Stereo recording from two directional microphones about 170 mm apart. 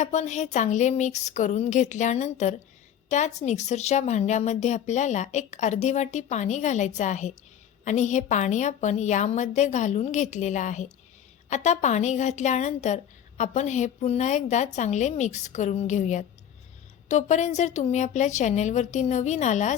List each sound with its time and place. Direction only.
0.0 s a woman's voice: 45° left (ahead or behind)